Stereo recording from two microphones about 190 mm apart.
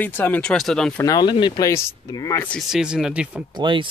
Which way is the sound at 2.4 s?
Centre (ahead or behind).